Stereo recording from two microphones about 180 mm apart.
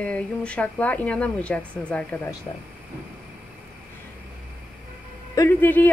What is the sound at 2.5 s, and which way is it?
Speech, 25° left (ahead or behind).